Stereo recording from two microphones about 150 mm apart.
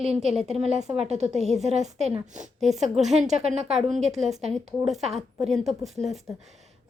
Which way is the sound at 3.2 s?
45° right (ahead or behind).